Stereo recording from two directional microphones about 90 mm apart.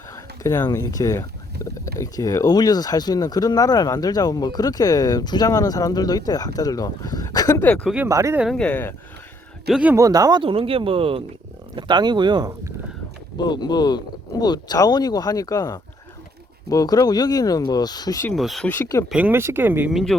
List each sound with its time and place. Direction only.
0.1 s a sound: 40° left (ahead or behind)
0.7 s speech: 40° left (ahead or behind)
8.0 s speech: 35° right (ahead or behind)
8.5 s speech: 10° left (ahead or behind)
9.9 s speech: 40° right (ahead or behind)
10.4 s speech: 85° right
11.8 s speech: 55° right (ahead or behind)
13.3 s speech: 50° left (ahead or behind)
18.3 s speech: centre (ahead or behind)
18.6 s speech: 20° left (ahead or behind)
19.0 s speech: 10° right (ahead or behind)
19.3 s speech: 25° right (ahead or behind)
19.9 s speech: centre (ahead or behind)